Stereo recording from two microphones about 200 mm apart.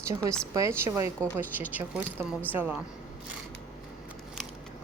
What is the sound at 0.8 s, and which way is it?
A woman's voice, 15° right (ahead or behind).